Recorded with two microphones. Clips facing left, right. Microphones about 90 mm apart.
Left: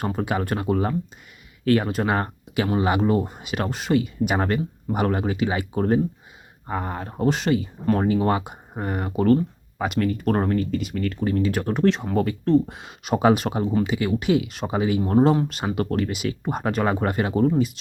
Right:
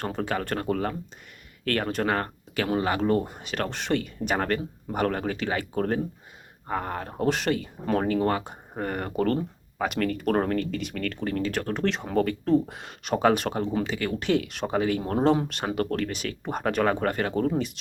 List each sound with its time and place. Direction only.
0.0 s speech: 10° left (ahead or behind)